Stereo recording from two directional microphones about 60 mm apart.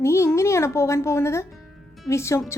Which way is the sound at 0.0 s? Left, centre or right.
Left.